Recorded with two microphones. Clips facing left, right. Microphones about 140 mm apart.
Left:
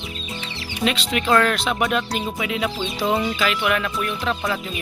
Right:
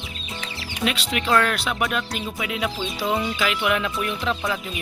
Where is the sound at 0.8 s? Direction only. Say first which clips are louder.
Left 3 dB; 5° right (ahead or behind).